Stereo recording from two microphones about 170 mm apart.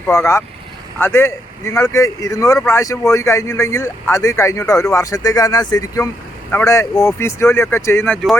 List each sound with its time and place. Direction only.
0.0 s speech: 15° left (ahead or behind)